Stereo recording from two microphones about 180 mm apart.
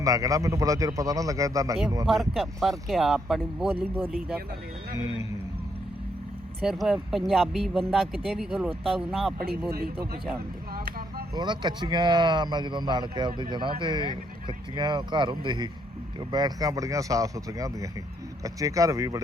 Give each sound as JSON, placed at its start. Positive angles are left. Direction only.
{"t": 0.0, "sound": "speech", "side_deg": -20}
{"t": 2.0, "sound": "speech", "side_deg": 0}
{"t": 6.6, "sound": "speech", "side_deg": 0}
{"t": 9.7, "sound": "a man's voice", "side_deg": -60}
{"t": 11.3, "sound": "speech", "side_deg": -25}